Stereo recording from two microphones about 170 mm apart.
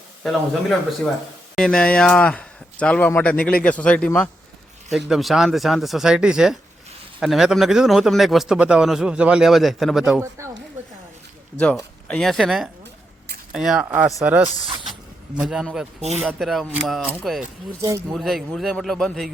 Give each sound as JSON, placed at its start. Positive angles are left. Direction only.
{"t": 0.2, "sound": "a man's voice", "side_deg": 0}
{"t": 10.2, "sound": "speech", "side_deg": -15}
{"t": 11.6, "sound": "a man's voice", "side_deg": 5}
{"t": 16.0, "sound": "speech", "side_deg": -40}
{"t": 16.2, "sound": "a man's voice", "side_deg": 0}